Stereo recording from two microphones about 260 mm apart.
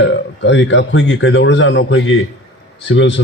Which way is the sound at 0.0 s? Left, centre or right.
Left.